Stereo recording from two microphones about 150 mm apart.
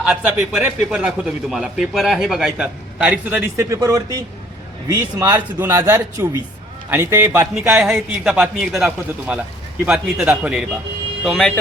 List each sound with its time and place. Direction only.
0.0 s a man's voice: 10° right (ahead or behind)
7.7 s a man's voice: 5° right (ahead or behind)